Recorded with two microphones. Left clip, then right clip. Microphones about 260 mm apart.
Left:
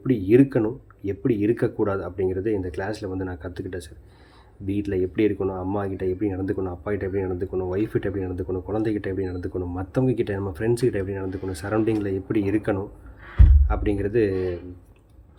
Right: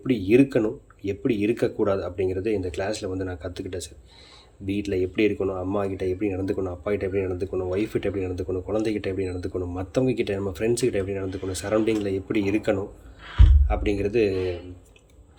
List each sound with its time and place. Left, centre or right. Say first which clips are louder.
0.1 s speech: left 1 dB; centre